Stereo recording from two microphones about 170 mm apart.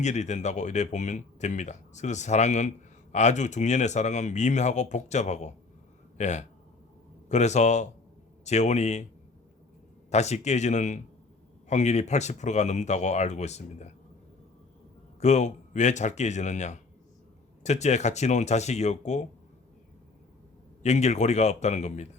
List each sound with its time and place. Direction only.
0.0 s speech: 45° left (ahead or behind)
10.1 s speech: 40° left (ahead or behind)
15.2 s speech: 40° left (ahead or behind)
20.8 s speech: 40° left (ahead or behind)